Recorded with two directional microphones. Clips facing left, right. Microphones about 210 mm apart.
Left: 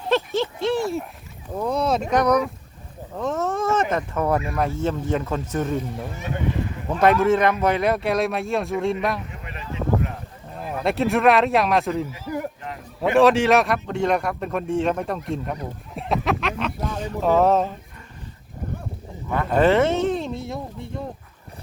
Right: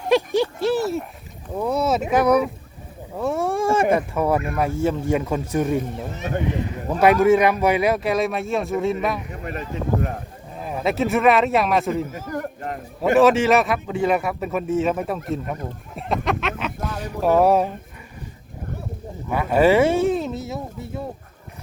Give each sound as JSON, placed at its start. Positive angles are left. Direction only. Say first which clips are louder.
{"t": 0.1, "sound": "a sound", "louder": "right 3 dB", "side_deg": -15}
{"t": 0.6, "sound": "speech", "louder": "right 2 dB", "side_deg": -5}
{"t": 9.3, "sound": "a sound", "louder": "right 5 dB", "side_deg": -45}
{"t": 10.5, "sound": "speech", "louder": "right 1 dB", "side_deg": 0}
{"t": 12.0, "sound": "a man's voice", "louder": "right 2 dB", "side_deg": -50}
{"t": 13.1, "sound": "speech", "louder": "even", "side_deg": 0}
{"t": 19.3, "sound": "speech", "louder": "right 2 dB", "side_deg": -10}